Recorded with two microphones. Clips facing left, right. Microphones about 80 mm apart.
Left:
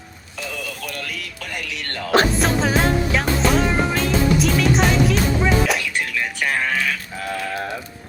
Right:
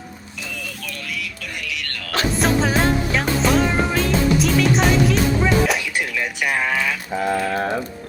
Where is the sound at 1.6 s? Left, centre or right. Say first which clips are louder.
Left 5 dB; left.